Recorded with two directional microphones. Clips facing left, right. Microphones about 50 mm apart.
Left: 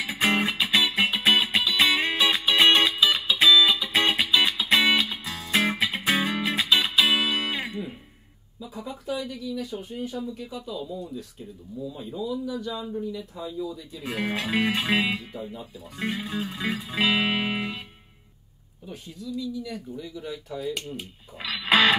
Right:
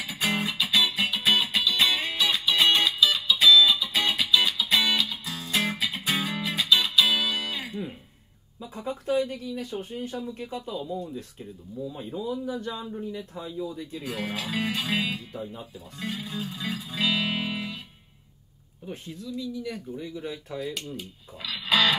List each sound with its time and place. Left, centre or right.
0.0 s music: left
8.5 s a sound: right
9.3 s speech: right
11.9 s speech: right
12.3 s speech: right
14.4 s speech: left
15.0 s speech: left
16.0 s speech: left
16.7 s music: left
20.0 s speech: right
21.4 s music: left